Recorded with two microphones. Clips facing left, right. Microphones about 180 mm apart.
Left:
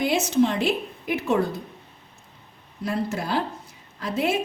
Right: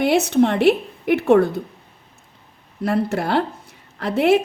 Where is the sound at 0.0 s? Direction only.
65° right (ahead or behind).